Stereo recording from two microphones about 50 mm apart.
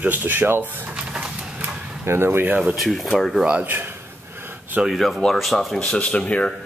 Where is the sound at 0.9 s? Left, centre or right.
Right.